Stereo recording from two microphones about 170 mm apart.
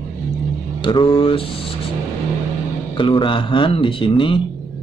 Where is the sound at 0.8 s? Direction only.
30° left (ahead or behind).